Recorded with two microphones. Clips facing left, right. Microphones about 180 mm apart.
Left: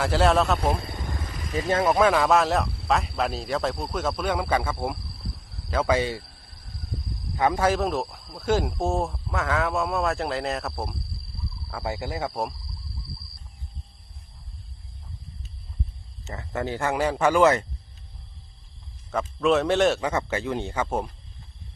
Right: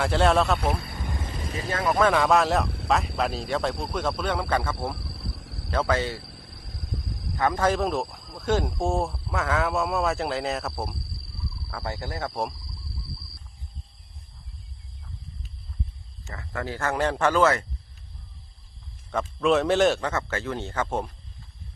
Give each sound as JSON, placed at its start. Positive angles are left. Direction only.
{"t": 0.0, "sound": "speech", "side_deg": 0}
{"t": 0.6, "sound": "speech", "side_deg": 25}
{"t": 1.1, "sound": "vehicle", "side_deg": -25}
{"t": 1.5, "sound": "speech", "side_deg": 25}
{"t": 2.0, "sound": "speech", "side_deg": 5}
{"t": 4.9, "sound": "cricket", "side_deg": -75}
{"t": 5.7, "sound": "speech", "side_deg": 10}
{"t": 6.2, "sound": "a sound", "side_deg": -90}
{"t": 7.3, "sound": "speech", "side_deg": 15}
{"t": 11.7, "sound": "speech", "side_deg": 15}
{"t": 16.2, "sound": "speech", "side_deg": 20}
{"t": 19.1, "sound": "speech", "side_deg": 0}
{"t": 20.1, "sound": "speech", "side_deg": 15}